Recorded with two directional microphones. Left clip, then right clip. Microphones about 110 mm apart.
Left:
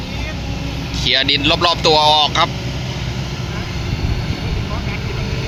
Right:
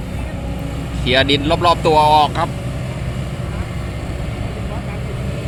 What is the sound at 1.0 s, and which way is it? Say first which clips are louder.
Speech: even; 20° right (ahead or behind).